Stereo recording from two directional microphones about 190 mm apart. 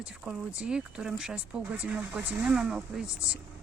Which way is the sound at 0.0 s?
5° right (ahead or behind).